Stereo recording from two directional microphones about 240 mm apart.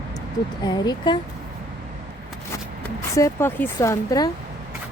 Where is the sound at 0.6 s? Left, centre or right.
Centre.